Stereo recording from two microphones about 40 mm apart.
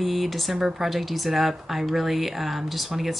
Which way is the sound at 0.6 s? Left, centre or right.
Centre.